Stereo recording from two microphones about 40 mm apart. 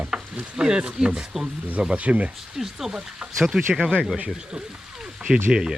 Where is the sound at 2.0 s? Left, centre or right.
Right.